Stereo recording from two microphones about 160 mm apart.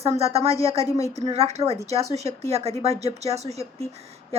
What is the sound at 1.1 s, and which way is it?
Speech, 40° right (ahead or behind).